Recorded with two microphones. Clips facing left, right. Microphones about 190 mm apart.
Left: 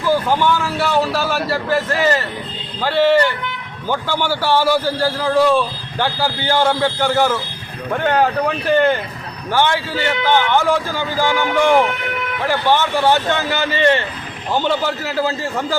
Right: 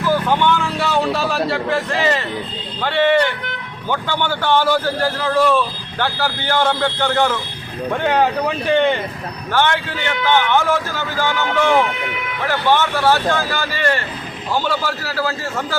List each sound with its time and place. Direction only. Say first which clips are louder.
0.0 s a man's voice: left 1 dB; 10° left (ahead or behind)
9.5 s a man's voice: left 1 dB; 10° left (ahead or behind)